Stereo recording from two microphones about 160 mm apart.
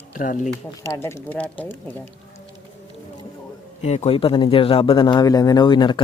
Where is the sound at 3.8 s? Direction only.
45° left (ahead or behind).